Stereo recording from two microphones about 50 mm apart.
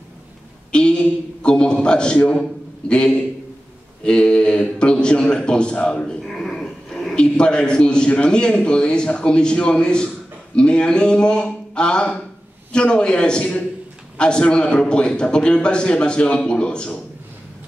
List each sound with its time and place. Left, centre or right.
0.7 s a man's voice: centre
6.0 s a sound: centre
7.2 s a man's voice: centre